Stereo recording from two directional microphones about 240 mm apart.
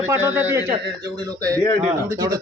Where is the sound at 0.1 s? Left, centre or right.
Centre.